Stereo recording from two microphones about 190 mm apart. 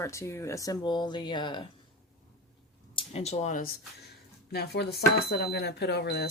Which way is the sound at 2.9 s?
35° left (ahead or behind).